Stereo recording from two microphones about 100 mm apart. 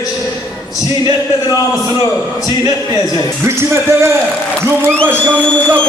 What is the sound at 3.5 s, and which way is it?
Speech, 25° right (ahead or behind).